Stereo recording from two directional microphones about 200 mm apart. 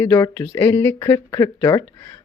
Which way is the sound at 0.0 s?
10° left (ahead or behind).